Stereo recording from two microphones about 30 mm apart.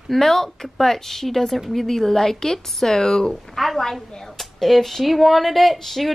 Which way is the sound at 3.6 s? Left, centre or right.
Centre.